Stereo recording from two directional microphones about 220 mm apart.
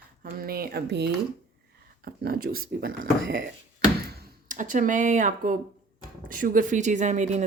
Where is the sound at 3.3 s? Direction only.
45° right (ahead or behind).